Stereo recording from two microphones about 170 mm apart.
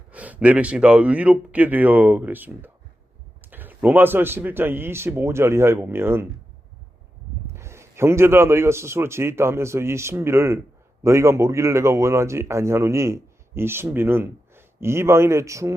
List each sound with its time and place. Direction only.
0.1 s speech: 10° right (ahead or behind)
7.4 s speech: 15° right (ahead or behind)